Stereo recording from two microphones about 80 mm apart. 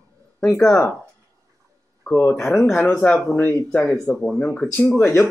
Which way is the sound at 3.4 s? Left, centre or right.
Left.